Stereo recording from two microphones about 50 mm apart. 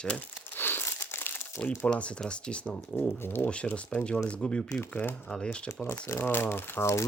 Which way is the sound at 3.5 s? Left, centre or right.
Left.